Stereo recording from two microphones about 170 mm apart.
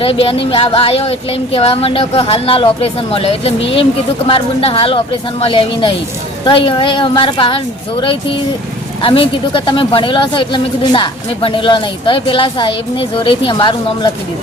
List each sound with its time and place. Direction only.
0.0 s a woman's voice: 35° left (ahead or behind)
9.0 s speech: 30° left (ahead or behind)